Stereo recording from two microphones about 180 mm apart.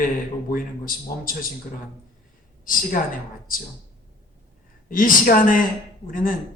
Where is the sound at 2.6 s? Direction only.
50° left (ahead or behind).